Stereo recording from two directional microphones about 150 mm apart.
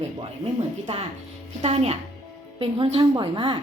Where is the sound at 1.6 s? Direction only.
45° right (ahead or behind).